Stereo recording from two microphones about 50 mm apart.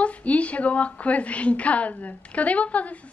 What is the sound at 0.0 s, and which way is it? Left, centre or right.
A woman's voice, left.